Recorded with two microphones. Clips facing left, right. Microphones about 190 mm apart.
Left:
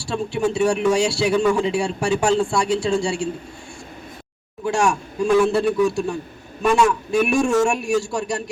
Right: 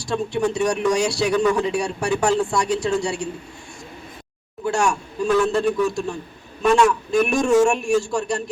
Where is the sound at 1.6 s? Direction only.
25° left (ahead or behind).